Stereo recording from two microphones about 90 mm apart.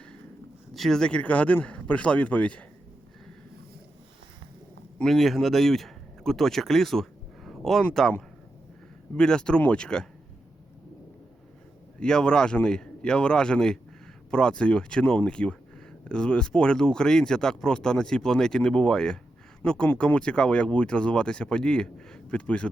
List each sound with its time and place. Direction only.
0.7 s speech: 5° left (ahead or behind)
4.9 s speech: centre (ahead or behind)
9.1 s speech: 10° left (ahead or behind)
11.9 s speech: 10° left (ahead or behind)